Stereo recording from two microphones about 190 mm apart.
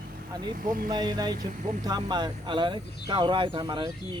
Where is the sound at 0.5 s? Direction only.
50° right (ahead or behind).